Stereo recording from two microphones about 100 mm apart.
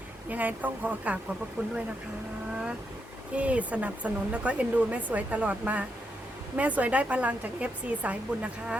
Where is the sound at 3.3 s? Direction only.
15° right (ahead or behind).